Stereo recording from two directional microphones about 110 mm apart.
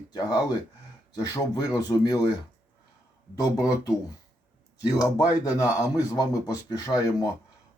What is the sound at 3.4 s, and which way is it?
Speech, 30° left (ahead or behind).